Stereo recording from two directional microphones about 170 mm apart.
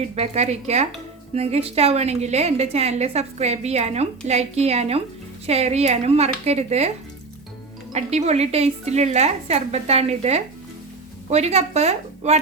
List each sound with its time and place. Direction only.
0.2 s a woman's voice: 40° right (ahead or behind)
7.9 s a woman's voice: 40° right (ahead or behind)